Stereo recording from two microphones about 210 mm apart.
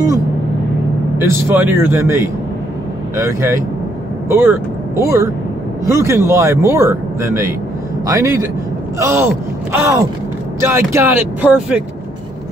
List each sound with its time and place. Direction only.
1.1 s speech: 10° right (ahead or behind)